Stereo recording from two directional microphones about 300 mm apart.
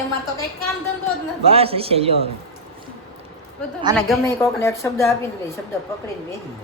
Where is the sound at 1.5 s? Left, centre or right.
Centre.